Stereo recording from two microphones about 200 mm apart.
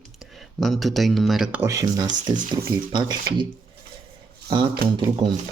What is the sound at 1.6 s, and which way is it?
Speech, 15° right (ahead or behind).